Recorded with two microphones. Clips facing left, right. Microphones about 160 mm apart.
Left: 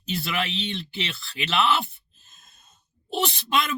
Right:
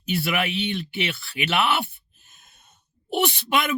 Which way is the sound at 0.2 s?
60° right (ahead or behind).